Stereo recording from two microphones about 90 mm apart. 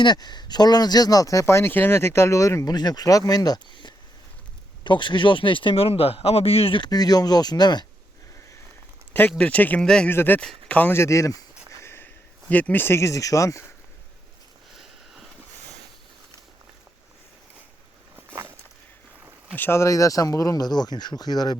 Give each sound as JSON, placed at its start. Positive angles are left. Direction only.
{"t": 0.0, "sound": "speech", "side_deg": 55}
{"t": 2.6, "sound": "speech", "side_deg": 50}
{"t": 6.9, "sound": "speech", "side_deg": 45}
{"t": 9.4, "sound": "speech", "side_deg": 15}
{"t": 10.1, "sound": "speech", "side_deg": 20}
{"t": 11.8, "sound": "speech", "side_deg": 25}
{"t": 14.8, "sound": "a sound", "side_deg": -5}
{"t": 18.3, "sound": "walk", "side_deg": -25}
{"t": 19.5, "sound": "speech", "side_deg": 25}